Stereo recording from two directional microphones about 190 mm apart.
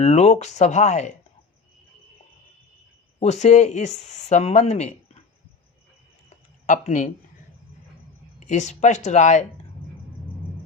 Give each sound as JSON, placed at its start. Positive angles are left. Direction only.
{"t": 0.0, "sound": "speech", "side_deg": 35}
{"t": 3.2, "sound": "speech", "side_deg": 35}
{"t": 6.7, "sound": "speech", "side_deg": 40}
{"t": 8.4, "sound": "speech", "side_deg": 40}